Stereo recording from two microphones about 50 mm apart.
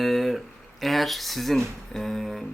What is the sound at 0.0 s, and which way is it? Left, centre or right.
Speech, centre.